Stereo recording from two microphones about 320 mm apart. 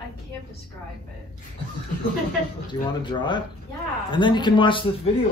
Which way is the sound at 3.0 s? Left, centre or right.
Centre.